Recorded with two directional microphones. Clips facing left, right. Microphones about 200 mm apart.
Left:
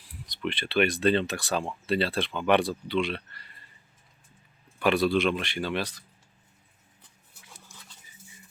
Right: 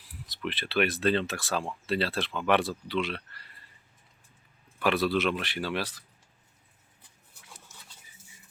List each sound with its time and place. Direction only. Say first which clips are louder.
0.3 s speech: left 3 dB; centre (ahead or behind)
4.8 s speech: left 3 dB; centre (ahead or behind)